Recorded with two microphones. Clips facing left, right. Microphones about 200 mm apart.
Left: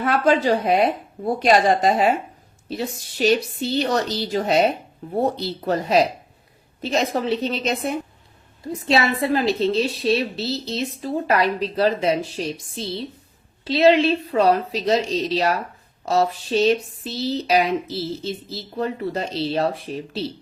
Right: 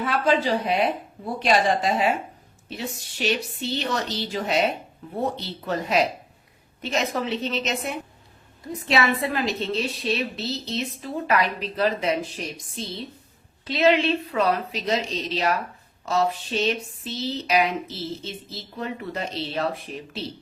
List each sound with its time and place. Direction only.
0.0 s a woman's voice: 50° left (ahead or behind); by 20.2 s 35° left (ahead or behind)